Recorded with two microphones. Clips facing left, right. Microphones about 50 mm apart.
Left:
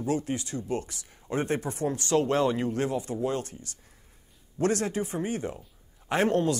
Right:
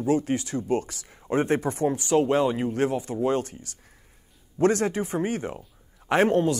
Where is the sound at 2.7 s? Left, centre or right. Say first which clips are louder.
Right 4 dB; right.